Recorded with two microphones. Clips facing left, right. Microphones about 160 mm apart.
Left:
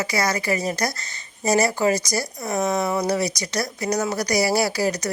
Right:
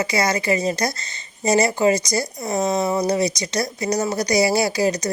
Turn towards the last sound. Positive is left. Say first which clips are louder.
# right 2 dB
turn(degrees=-20)  # may be behind; listen again after turning